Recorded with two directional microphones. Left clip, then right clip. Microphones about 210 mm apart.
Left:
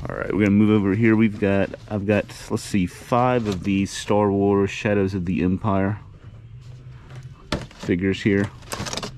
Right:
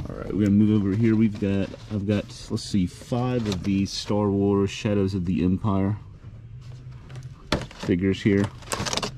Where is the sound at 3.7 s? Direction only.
15° right (ahead or behind).